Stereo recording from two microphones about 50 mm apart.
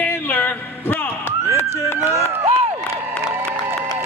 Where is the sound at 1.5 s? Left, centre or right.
Left.